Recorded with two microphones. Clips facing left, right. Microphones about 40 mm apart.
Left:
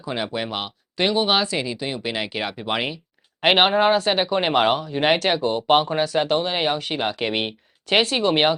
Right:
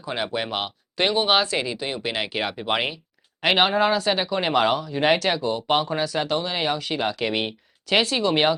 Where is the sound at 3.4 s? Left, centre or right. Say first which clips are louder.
Left 3 dB; left.